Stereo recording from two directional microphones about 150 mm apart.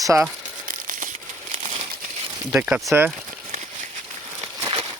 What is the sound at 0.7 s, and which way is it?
Crumpling, 65° right (ahead or behind).